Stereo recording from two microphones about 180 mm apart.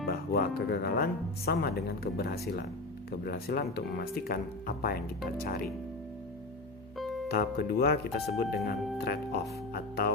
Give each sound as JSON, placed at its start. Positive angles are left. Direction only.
{"t": 0.0, "sound": "speech", "side_deg": 60}
{"t": 7.3, "sound": "speech", "side_deg": 60}